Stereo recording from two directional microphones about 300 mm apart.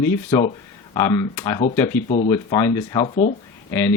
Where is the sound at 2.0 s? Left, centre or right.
Left.